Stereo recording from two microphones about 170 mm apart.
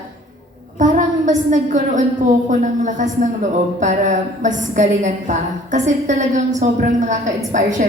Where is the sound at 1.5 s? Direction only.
50° right (ahead or behind).